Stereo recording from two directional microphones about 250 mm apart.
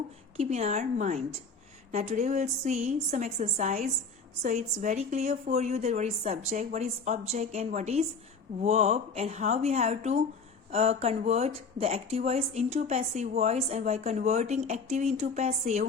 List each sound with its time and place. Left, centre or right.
0.3 s speech: right